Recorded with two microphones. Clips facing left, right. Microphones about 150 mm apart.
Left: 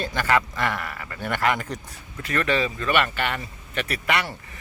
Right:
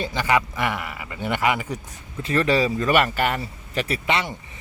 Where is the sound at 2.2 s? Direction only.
30° right (ahead or behind).